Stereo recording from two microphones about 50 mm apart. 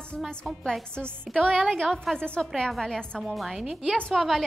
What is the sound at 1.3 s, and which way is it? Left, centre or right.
Speech, centre.